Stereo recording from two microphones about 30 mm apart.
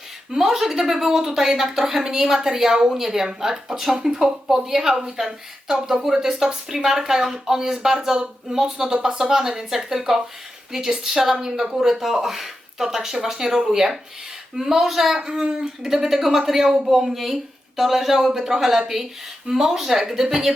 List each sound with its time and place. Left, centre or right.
0.3 s a woman's voice: centre